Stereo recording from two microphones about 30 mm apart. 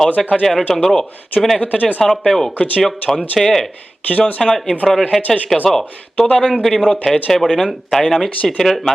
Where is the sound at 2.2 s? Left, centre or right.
Centre.